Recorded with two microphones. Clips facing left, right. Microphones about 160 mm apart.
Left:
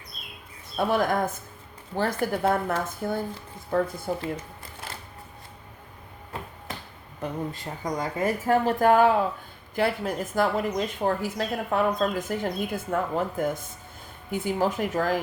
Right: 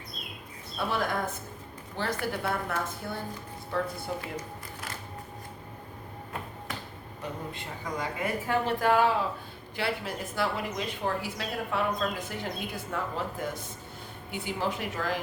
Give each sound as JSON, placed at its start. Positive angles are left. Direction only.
{"t": 0.8, "sound": "a woman's voice", "side_deg": 50}
{"t": 7.2, "sound": "a woman's voice", "side_deg": 40}